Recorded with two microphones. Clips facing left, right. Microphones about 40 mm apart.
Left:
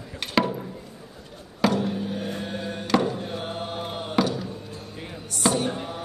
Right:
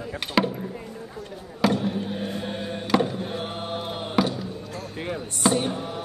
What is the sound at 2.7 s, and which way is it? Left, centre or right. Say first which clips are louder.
Music: even; centre.